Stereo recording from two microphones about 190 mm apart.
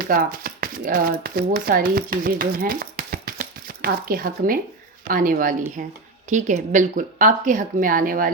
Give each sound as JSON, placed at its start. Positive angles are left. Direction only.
{"t": 0.0, "sound": "speech", "side_deg": -50}